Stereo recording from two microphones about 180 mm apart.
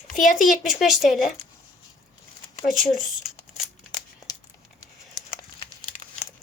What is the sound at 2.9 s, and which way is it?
Speech, centre (ahead or behind).